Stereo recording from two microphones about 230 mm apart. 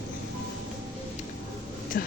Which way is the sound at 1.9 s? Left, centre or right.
Left.